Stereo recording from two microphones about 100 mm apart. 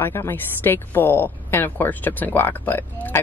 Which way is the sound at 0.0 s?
20° left (ahead or behind).